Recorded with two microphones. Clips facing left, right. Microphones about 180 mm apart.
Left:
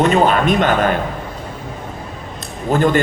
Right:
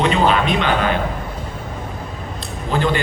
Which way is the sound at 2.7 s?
45° left (ahead or behind).